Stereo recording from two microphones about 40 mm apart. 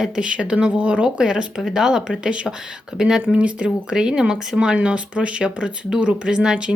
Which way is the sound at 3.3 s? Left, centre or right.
Right.